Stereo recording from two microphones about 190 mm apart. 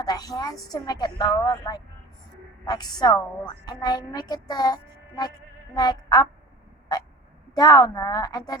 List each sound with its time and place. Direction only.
0.0 s a woman's voice: 20° left (ahead or behind)
7.5 s a woman's voice: 20° left (ahead or behind)